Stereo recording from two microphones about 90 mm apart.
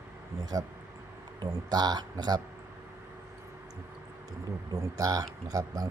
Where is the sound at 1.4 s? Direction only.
50° right (ahead or behind).